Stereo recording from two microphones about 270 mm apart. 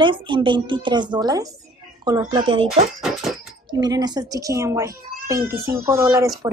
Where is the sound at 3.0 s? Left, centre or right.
Centre.